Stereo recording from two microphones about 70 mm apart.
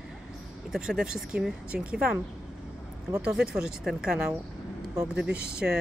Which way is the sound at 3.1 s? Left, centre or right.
Centre.